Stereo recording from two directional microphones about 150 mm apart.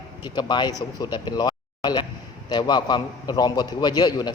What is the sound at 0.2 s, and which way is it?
A man's voice, 30° left (ahead or behind).